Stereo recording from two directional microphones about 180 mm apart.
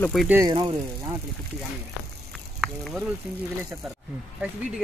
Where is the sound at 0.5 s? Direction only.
25° right (ahead or behind).